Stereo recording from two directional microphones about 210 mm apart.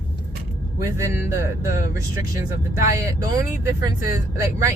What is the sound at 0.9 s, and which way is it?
Speech, 10° right (ahead or behind).